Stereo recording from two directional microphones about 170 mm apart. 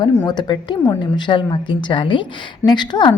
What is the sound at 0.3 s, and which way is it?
A woman's voice, 25° left (ahead or behind).